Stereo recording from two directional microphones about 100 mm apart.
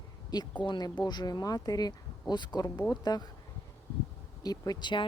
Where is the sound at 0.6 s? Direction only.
45° left (ahead or behind).